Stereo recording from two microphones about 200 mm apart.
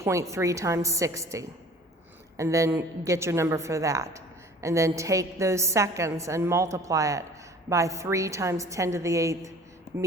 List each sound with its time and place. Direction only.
0.0 s a woman's voice: 15° right (ahead or behind)